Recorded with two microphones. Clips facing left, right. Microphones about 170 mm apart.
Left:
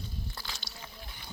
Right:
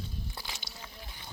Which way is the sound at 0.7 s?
50° right (ahead or behind).